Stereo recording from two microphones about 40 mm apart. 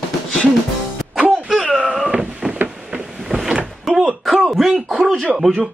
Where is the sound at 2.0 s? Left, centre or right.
Right.